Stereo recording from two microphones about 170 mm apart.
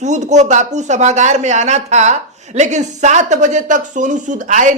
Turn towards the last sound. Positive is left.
turn(degrees=-45)  # may be behind; listen again after turning